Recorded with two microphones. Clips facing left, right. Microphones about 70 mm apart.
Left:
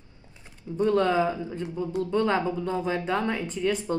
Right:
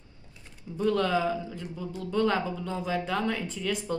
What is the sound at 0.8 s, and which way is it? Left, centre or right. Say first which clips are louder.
Speech: left 3 dB; left.